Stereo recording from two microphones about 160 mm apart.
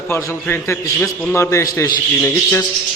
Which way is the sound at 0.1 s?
15° left (ahead or behind).